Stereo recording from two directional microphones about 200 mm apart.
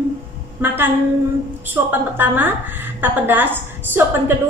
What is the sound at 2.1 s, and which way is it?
A woman's voice, 10° right (ahead or behind).